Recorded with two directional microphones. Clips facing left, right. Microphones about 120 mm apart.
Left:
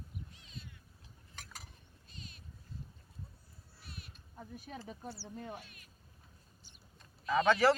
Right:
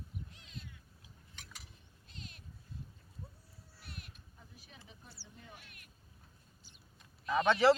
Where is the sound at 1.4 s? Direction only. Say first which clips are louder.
Left 4 dB; 45° left (ahead or behind).